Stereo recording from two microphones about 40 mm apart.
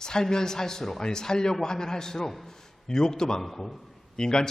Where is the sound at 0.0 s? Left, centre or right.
Centre.